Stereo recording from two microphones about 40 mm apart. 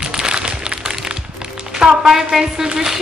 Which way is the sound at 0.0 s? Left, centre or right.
Centre.